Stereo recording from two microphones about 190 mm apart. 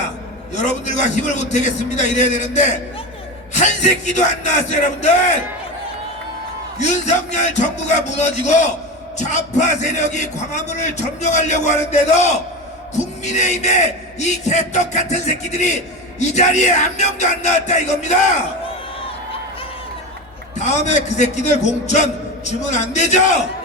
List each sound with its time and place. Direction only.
0.5 s a man's voice: 40° left (ahead or behind)
6.8 s a man's voice: 40° left (ahead or behind)
20.6 s a man's voice: 40° left (ahead or behind)